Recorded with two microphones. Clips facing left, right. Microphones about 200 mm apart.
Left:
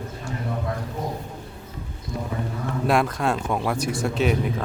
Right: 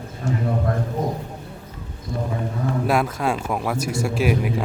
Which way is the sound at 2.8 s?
5° right (ahead or behind).